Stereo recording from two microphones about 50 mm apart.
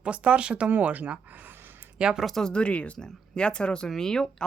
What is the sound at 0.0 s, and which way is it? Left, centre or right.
Speech, right.